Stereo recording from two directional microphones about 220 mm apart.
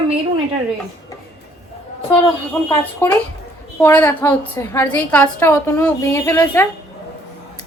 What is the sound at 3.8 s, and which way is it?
A woman's voice, 10° left (ahead or behind).